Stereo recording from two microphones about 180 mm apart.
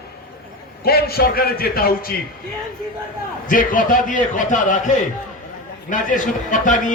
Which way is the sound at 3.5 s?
50° left (ahead or behind).